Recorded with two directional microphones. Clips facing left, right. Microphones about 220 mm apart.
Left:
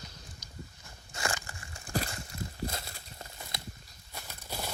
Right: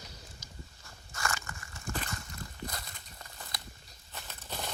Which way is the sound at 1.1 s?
25° left (ahead or behind).